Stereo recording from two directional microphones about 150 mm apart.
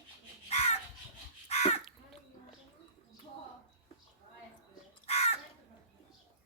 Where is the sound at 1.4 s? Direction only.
45° left (ahead or behind).